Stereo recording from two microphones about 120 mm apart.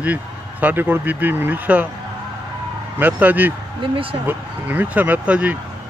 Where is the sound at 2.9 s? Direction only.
15° right (ahead or behind).